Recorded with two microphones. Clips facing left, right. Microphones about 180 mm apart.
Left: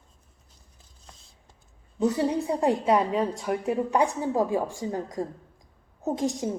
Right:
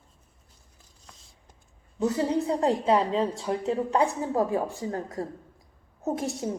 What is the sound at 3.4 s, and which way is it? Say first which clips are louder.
Speech: left 1 dB; 20° right (ahead or behind).